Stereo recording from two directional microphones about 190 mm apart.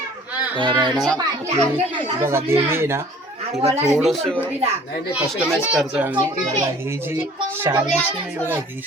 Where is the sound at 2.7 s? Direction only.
15° right (ahead or behind).